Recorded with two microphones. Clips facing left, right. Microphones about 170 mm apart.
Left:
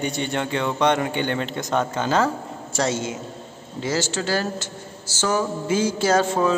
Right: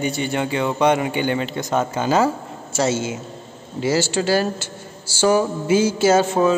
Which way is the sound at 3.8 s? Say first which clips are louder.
Right 5 dB; 10° right (ahead or behind).